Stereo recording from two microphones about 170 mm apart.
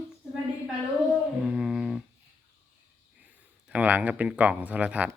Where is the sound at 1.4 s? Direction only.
5° right (ahead or behind).